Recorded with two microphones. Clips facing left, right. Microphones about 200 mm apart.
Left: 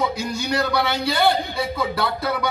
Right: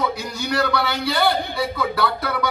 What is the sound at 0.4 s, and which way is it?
A man's voice, 20° left (ahead or behind).